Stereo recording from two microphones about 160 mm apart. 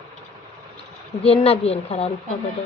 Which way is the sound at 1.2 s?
40° left (ahead or behind).